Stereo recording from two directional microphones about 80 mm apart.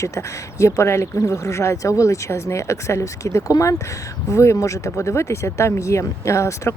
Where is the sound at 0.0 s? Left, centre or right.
Left.